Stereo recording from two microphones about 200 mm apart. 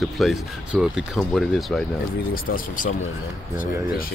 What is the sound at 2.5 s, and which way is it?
Speech, 40° left (ahead or behind).